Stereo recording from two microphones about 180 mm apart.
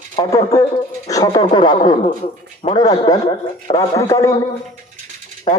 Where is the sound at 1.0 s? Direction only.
20° left (ahead or behind).